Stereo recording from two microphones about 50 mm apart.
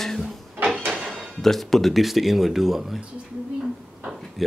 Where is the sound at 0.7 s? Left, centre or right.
Centre.